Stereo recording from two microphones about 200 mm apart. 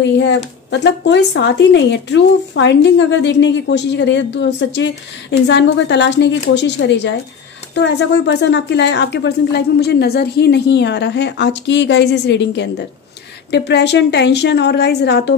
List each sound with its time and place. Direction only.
0.0 s speech: 60° left (ahead or behind)